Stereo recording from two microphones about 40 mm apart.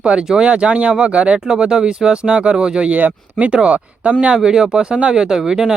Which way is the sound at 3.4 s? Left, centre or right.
Right.